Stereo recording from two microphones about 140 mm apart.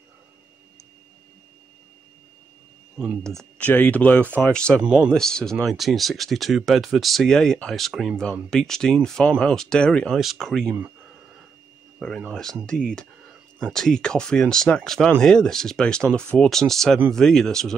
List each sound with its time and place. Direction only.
3.3 s speech: 5° left (ahead or behind)
4.8 s speech: 10° right (ahead or behind)
5.1 s speech: 5° left (ahead or behind)
12.0 s speech: 5° left (ahead or behind)